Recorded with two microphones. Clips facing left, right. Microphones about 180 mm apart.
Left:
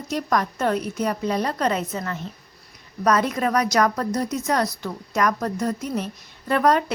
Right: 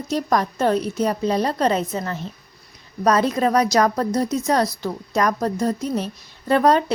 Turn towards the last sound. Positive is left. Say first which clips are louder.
# right 3 dB
turn(degrees=-30)  # may be behind; listen again after turning